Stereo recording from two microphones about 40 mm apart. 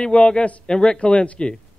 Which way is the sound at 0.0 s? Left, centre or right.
Left.